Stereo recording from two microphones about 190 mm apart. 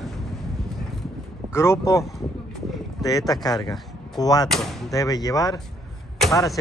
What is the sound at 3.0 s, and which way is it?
Speech, 20° left (ahead or behind).